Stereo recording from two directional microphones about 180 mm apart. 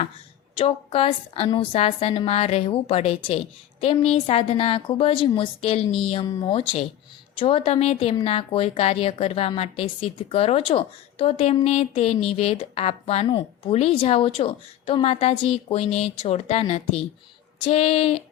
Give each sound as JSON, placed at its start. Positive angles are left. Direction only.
{"t": 0.5, "sound": "a woman's voice", "side_deg": 30}